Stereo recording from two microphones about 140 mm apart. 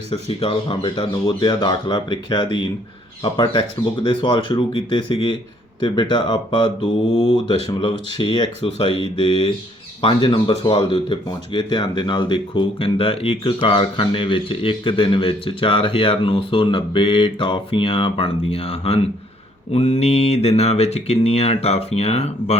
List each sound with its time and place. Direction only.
0.1 s speech: 45° left (ahead or behind)